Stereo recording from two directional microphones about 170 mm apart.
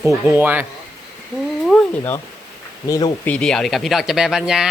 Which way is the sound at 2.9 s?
25° left (ahead or behind).